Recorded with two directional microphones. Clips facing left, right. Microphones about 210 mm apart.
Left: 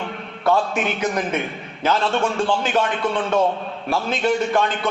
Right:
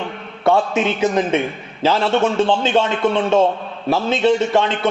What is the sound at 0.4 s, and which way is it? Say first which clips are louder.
A man's voice: right 4 dB; 25° right (ahead or behind).